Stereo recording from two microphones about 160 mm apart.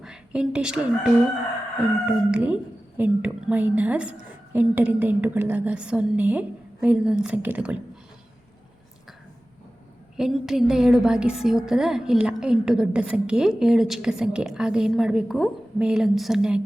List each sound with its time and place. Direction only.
0.0 s a woman's voice: 5° right (ahead or behind)
2.0 s a woman's voice: 10° right (ahead or behind)
10.2 s a woman's voice: 5° right (ahead or behind)